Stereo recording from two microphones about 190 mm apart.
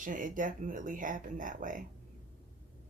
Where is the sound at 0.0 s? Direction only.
45° right (ahead or behind).